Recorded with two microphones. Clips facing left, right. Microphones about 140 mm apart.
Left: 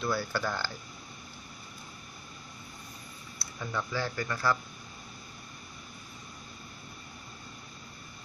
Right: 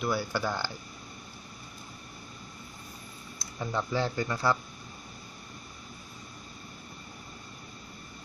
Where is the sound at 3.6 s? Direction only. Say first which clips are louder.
Right 4 dB; 25° right (ahead or behind).